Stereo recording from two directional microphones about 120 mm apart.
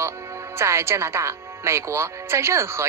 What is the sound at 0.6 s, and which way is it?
A woman's voice, 20° right (ahead or behind).